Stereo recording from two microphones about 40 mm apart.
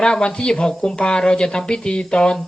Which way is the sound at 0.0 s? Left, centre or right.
Left.